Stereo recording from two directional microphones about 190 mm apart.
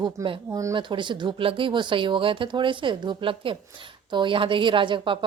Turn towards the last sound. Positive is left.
turn(degrees=-25)  # may be behind; listen again after turning